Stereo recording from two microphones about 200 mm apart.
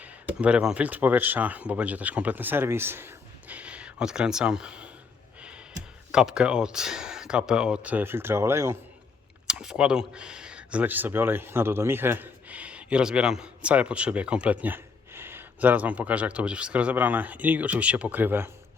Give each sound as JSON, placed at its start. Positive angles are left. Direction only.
{"t": 0.0, "sound": "speech", "side_deg": -5}
{"t": 5.4, "sound": "a sound", "side_deg": -5}
{"t": 6.1, "sound": "speech", "side_deg": -5}